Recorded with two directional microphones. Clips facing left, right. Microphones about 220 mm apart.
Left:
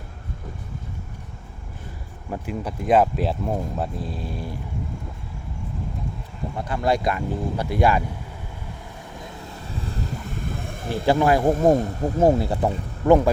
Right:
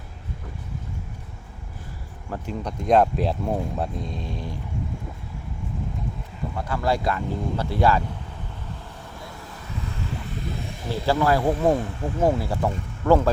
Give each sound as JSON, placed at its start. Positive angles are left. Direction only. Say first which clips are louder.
{"t": 2.3, "sound": "speech", "louder": "left 1 dB", "side_deg": 5}
{"t": 6.6, "sound": "speech", "louder": "left 2 dB", "side_deg": 20}
{"t": 9.2, "sound": "vehicle", "louder": "left 3 dB", "side_deg": 30}
{"t": 11.0, "sound": "speech", "louder": "left 3 dB", "side_deg": 20}
{"t": 11.4, "sound": "speech", "louder": "left 3 dB", "side_deg": 45}
{"t": 12.4, "sound": "speech", "louder": "left 3 dB", "side_deg": 20}